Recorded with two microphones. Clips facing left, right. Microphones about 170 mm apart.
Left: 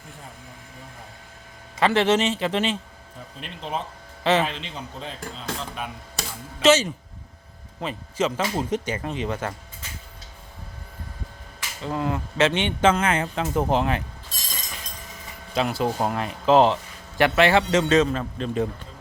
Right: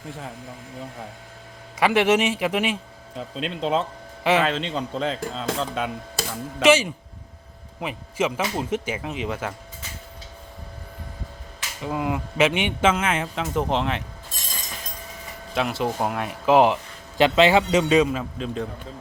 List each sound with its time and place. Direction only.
1.8 s a man's voice: 10° right (ahead or behind)
3.2 s speech: 90° right
6.6 s a man's voice: 10° right (ahead or behind)
11.8 s speech: 15° right (ahead or behind); by 14.0 s 5° left (ahead or behind)
15.5 s a man's voice: centre (ahead or behind)